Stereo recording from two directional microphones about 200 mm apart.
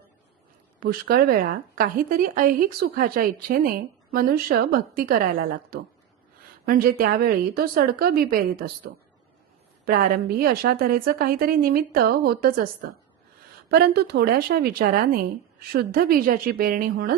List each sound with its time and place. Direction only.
0.8 s speech: 50° right (ahead or behind)
9.8 s speech: 45° right (ahead or behind)
13.7 s speech: 55° right (ahead or behind)